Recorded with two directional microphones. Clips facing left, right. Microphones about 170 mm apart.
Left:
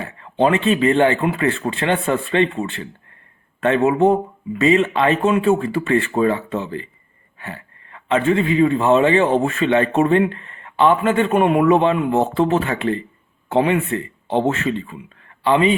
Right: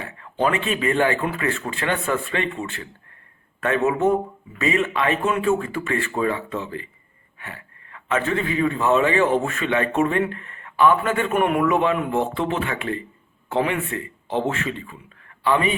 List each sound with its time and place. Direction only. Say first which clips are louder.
0.2 s a man's voice: left 5 dB; 30° left (ahead or behind)